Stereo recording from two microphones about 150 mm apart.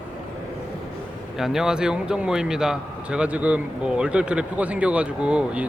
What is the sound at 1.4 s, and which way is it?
A man's voice, 5° right (ahead or behind).